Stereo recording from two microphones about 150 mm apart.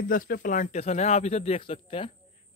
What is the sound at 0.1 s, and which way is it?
Speech, 70° left (ahead or behind).